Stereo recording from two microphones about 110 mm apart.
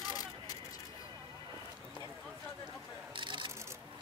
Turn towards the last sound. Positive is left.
turn(degrees=-45)  # may be behind; listen again after turning